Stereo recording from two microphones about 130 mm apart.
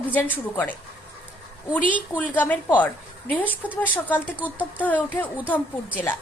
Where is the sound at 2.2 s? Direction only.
15° left (ahead or behind).